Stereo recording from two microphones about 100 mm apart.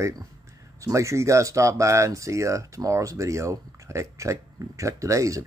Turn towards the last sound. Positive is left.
turn(degrees=-30)  # may be behind; listen again after turning